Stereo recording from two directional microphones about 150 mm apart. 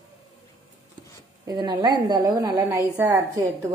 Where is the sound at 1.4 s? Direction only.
25° right (ahead or behind).